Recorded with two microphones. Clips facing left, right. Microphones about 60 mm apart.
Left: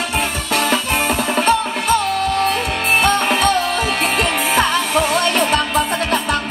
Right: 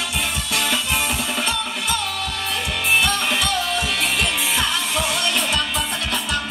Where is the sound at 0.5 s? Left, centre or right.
Left.